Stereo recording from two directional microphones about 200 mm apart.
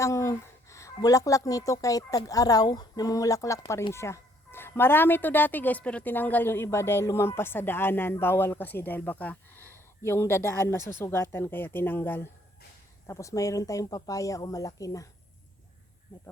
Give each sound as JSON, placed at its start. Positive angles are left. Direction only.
{"t": 0.0, "sound": "a woman's voice", "side_deg": 15}